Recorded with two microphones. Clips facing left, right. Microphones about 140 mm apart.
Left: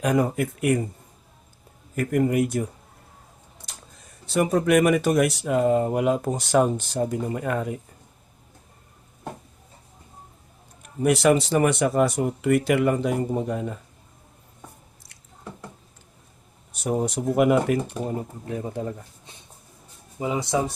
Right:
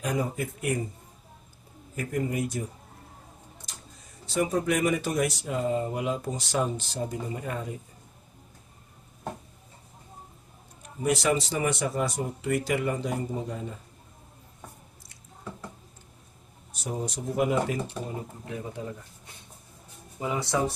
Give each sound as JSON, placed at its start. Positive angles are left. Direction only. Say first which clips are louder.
{"t": 0.0, "sound": "speech", "louder": "left 7 dB", "side_deg": 65}
{"t": 2.0, "sound": "speech", "louder": "left 8 dB", "side_deg": 65}
{"t": 4.4, "sound": "speech", "louder": "left 6 dB", "side_deg": 75}
{"t": 11.0, "sound": "speech", "louder": "left 6 dB", "side_deg": 65}
{"t": 16.8, "sound": "speech", "louder": "left 8 dB", "side_deg": 65}
{"t": 20.1, "sound": "speech", "louder": "left 4 dB", "side_deg": 15}